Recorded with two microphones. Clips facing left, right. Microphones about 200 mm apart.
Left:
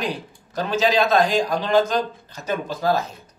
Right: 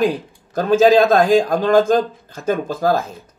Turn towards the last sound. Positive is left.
turn(degrees=-50)  # may be behind; listen again after turning